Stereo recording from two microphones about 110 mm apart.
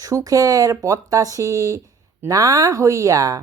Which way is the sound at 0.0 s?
30° right (ahead or behind).